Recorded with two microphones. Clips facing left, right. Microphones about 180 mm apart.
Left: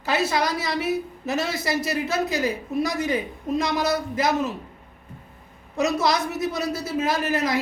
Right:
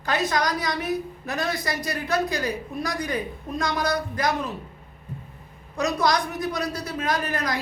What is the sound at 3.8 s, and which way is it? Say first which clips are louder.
Speech: left 2 dB; 20° left (ahead or behind).